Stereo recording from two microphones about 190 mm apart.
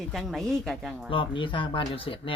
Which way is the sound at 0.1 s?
Centre (ahead or behind).